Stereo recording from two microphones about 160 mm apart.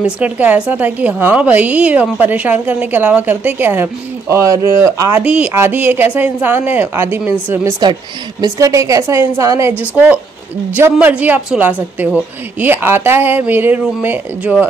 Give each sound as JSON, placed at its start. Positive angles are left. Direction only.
{"t": 0.0, "sound": "a woman's voice", "side_deg": -10}
{"t": 5.2, "sound": "a woman's voice", "side_deg": -10}
{"t": 7.8, "sound": "a woman's voice", "side_deg": -25}